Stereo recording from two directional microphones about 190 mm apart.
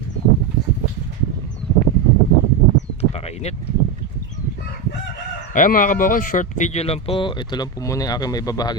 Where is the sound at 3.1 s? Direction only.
35° left (ahead or behind).